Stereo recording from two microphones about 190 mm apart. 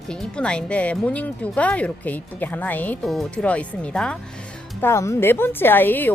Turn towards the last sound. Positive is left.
turn(degrees=10)  # may be behind; listen again after turning